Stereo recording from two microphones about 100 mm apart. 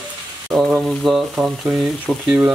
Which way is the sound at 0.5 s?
5° right (ahead or behind).